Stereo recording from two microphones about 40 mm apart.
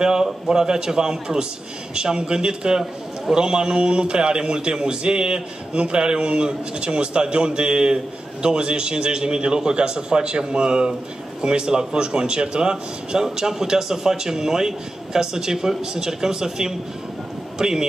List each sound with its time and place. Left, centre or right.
0.0 s a man's voice: centre